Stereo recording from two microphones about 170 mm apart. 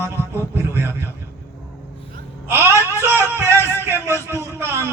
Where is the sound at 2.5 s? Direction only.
15° right (ahead or behind).